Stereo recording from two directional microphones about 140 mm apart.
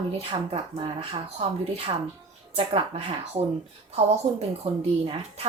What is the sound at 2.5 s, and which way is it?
Speech, 40° right (ahead or behind).